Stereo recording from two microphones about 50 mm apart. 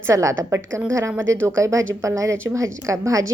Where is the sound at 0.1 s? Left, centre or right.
Right.